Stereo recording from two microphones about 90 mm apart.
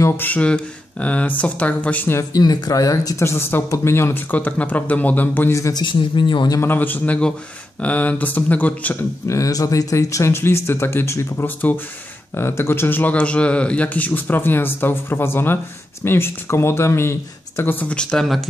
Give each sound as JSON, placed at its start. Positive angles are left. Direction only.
{"t": 0.2, "sound": "speech", "side_deg": 15}
{"t": 2.3, "sound": "speech", "side_deg": 50}
{"t": 3.3, "sound": "a man's voice", "side_deg": 25}
{"t": 5.5, "sound": "speech", "side_deg": 35}
{"t": 5.8, "sound": "speech", "side_deg": 60}
{"t": 6.6, "sound": "a man's voice", "side_deg": 20}
{"t": 9.3, "sound": "a man's voice", "side_deg": 40}
{"t": 17.7, "sound": "speech", "side_deg": 10}
{"t": 18.2, "sound": "speech", "side_deg": 0}